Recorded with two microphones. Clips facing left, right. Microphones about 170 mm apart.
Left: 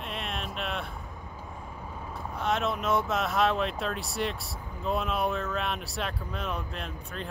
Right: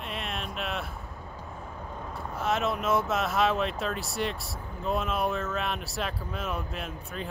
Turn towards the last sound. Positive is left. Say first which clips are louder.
# right 1 dB
turn(degrees=-5)  # may be behind; listen again after turning